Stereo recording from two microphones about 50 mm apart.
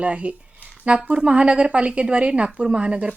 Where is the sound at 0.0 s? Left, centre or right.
Right.